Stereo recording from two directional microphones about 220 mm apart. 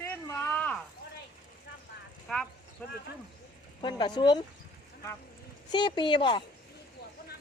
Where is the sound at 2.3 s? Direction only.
Centre (ahead or behind).